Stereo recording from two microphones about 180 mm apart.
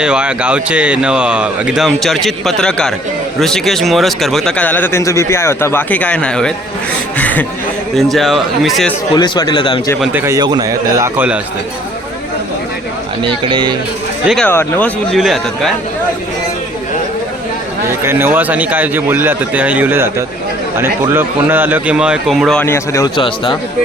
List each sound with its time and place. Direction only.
0.0 s speech: 5° right (ahead or behind)
9.1 s speech: 25° left (ahead or behind)
10.0 s speech: 15° right (ahead or behind)
13.2 s speech: 30° right (ahead or behind)
14.3 s speech: centre (ahead or behind)
18.0 s speech: 15° right (ahead or behind)
22.6 s speech: 15° left (ahead or behind)